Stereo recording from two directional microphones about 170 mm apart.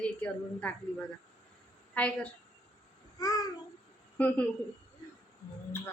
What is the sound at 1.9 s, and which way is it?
Speech, 5° left (ahead or behind).